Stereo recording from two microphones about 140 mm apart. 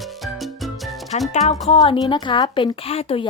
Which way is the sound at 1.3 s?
55° left (ahead or behind).